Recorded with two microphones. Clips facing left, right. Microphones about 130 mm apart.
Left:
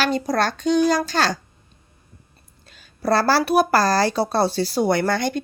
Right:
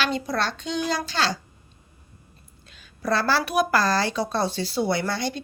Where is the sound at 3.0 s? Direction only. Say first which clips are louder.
Left 5 dB; 40° left (ahead or behind).